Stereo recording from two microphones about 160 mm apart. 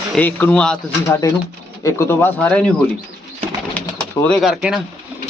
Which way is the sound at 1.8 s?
15° left (ahead or behind).